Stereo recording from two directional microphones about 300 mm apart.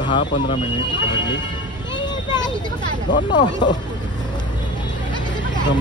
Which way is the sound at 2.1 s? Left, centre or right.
Centre.